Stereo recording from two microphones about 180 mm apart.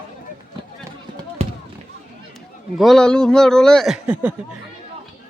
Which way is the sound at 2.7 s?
Centre (ahead or behind).